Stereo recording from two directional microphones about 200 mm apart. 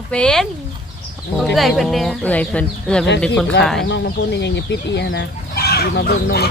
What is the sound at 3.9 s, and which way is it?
Speech, 60° left (ahead or behind).